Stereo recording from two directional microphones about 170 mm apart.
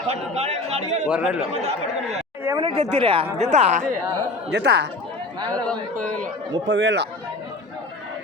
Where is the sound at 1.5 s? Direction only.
40° right (ahead or behind).